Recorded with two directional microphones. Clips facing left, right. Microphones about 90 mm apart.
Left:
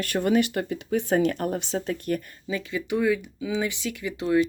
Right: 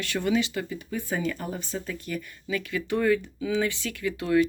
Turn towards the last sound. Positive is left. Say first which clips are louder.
# even
turn(degrees=20)  # may be behind; listen again after turning